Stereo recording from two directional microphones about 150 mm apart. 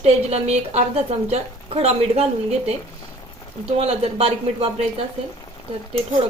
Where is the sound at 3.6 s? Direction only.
40° right (ahead or behind).